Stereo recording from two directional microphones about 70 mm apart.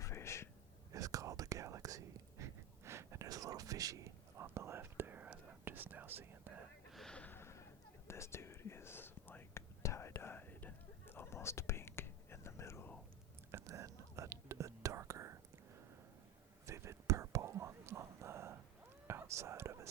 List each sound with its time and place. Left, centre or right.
0.0 s a sound: left
0.9 s whispering: right
3.2 s whispering: right
4.4 s whispering: right
7.1 s gasp: centre
7.3 s a sound: left
8.0 s whispering: left
9.8 s whispering: left
13.7 s whispering: right
16.6 s whispering: right
17.4 s whispering: right